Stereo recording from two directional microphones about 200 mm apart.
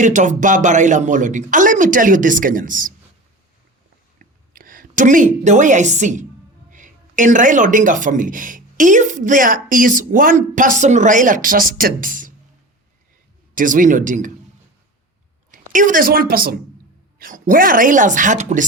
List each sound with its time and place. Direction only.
0.0 s speech: 40° right (ahead or behind)
4.2 s a woman's voice: 45° right (ahead or behind)
13.6 s speech: 40° right (ahead or behind)
15.5 s a woman's voice: 40° right (ahead or behind)